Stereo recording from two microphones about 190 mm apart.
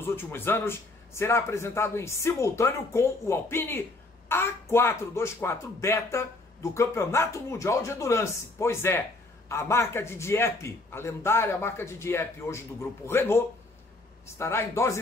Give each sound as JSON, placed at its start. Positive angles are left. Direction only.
{"t": 0.0, "sound": "speech", "side_deg": 10}